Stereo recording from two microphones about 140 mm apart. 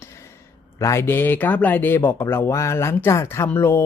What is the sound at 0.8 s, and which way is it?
Speech, 20° left (ahead or behind).